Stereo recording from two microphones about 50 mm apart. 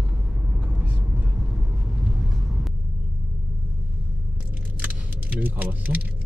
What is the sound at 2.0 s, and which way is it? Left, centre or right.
Vehicle, centre.